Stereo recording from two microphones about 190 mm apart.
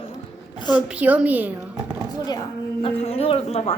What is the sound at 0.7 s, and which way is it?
Speech, 5° right (ahead or behind).